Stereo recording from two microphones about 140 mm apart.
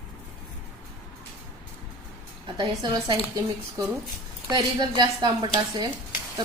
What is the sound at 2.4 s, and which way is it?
Speech, 35° right (ahead or behind).